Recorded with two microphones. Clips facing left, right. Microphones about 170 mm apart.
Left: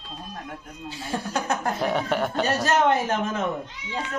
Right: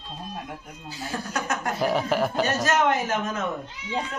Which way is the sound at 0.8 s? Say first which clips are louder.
Left 2 dB; 25° left (ahead or behind).